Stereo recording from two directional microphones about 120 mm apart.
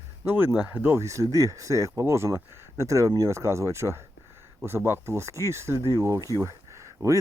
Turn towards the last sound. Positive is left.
turn(degrees=-25)  # may be behind; listen again after turning